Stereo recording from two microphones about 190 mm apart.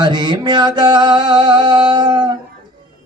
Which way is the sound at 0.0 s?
25° right (ahead or behind).